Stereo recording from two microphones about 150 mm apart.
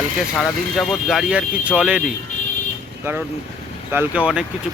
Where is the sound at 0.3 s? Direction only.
Centre (ahead or behind).